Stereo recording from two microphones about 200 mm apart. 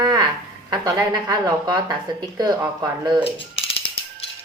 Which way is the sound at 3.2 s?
25° left (ahead or behind).